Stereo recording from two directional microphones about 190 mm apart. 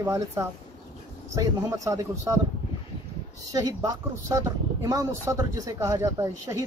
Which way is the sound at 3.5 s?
20° right (ahead or behind).